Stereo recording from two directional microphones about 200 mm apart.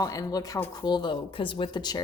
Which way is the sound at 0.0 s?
20° left (ahead or behind).